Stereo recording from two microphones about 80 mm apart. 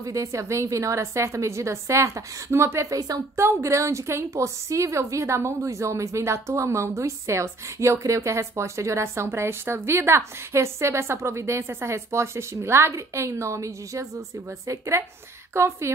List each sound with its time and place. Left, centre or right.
0.0 s a woman's voice: right